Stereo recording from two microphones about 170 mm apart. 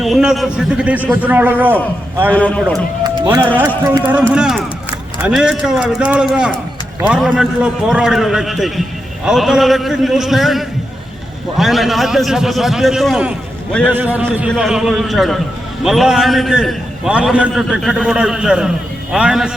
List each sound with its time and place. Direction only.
0.0 s a man's voice: 5° right (ahead or behind)
2.3 s a man's voice: 10° left (ahead or behind)
3.4 s a man's voice: 10° right (ahead or behind)